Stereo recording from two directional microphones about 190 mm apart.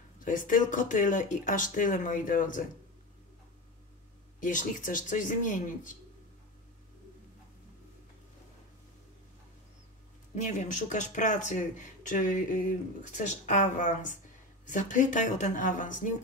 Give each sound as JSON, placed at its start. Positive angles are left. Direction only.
{"t": 0.2, "sound": "speech", "side_deg": 45}
{"t": 4.4, "sound": "speech", "side_deg": 45}
{"t": 10.3, "sound": "speech", "side_deg": 40}